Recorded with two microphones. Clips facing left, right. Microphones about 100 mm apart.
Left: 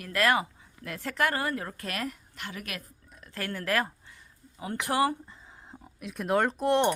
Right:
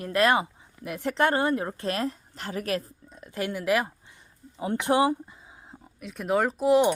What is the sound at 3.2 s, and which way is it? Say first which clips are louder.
A woman's voice: right 5 dB; 15° right (ahead or behind).